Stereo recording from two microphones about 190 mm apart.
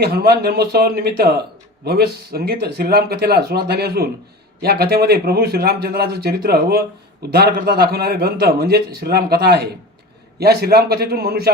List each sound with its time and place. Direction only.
0.0 s a man's voice: 55° right (ahead or behind)